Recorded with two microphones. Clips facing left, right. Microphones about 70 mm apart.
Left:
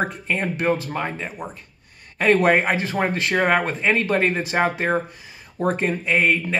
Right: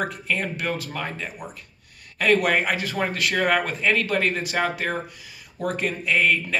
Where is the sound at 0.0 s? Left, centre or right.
Left.